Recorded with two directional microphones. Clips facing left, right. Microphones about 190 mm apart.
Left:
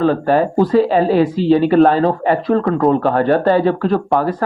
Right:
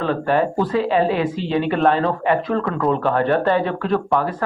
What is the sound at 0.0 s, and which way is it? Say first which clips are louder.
Speech: left 5 dB; 40° left (ahead or behind).